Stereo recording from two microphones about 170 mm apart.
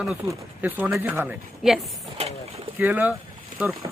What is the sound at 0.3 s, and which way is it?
Speech, 10° right (ahead or behind).